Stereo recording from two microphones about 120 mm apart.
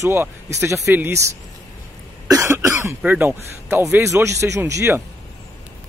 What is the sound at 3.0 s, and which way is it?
Speech, 15° right (ahead or behind).